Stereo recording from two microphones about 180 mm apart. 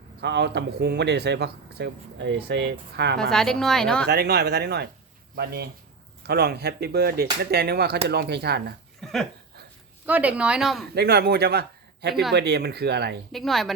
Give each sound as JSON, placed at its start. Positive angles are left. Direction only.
{"t": 0.2, "sound": "speech", "side_deg": -70}
{"t": 3.2, "sound": "a woman's voice", "side_deg": 5}
{"t": 4.0, "sound": "speech", "side_deg": -65}
{"t": 9.0, "sound": "a sound", "side_deg": 0}
{"t": 10.1, "sound": "a woman's voice", "side_deg": -10}
{"t": 10.9, "sound": "speech", "side_deg": -60}
{"t": 13.3, "sound": "a woman's voice", "side_deg": 0}